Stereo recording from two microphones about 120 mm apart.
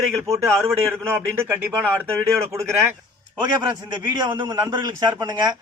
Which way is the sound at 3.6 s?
40° right (ahead or behind).